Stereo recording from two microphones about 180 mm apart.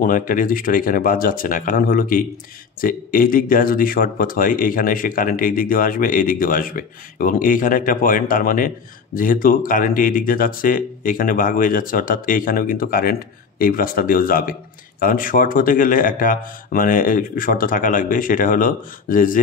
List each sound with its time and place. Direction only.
0.0 s speech: 50° left (ahead or behind)